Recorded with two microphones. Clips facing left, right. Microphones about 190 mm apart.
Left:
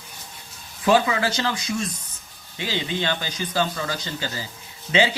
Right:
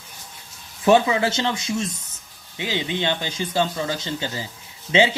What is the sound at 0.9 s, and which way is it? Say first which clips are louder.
Speech: right 3 dB; 25° right (ahead or behind).